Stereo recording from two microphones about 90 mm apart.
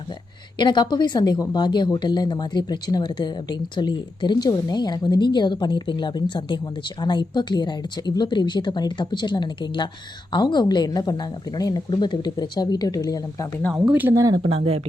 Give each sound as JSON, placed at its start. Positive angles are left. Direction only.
{"t": 0.6, "sound": "a woman's voice", "side_deg": 55}
{"t": 14.1, "sound": "speech", "side_deg": -40}
{"t": 14.3, "sound": "speech", "side_deg": -85}